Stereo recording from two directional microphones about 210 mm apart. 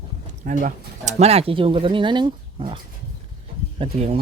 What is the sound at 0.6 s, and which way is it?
Speech, 35° right (ahead or behind).